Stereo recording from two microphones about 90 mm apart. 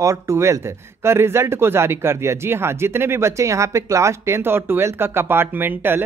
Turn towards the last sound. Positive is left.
turn(degrees=-20)  # may be behind; listen again after turning